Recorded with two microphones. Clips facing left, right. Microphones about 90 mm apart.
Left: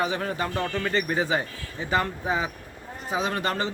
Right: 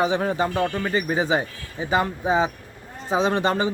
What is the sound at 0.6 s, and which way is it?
Speech, 10° right (ahead or behind).